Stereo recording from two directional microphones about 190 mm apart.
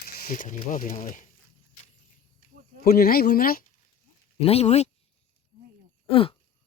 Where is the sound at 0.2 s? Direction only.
45° left (ahead or behind).